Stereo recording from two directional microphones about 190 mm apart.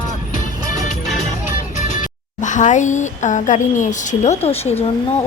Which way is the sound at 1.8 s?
40° left (ahead or behind).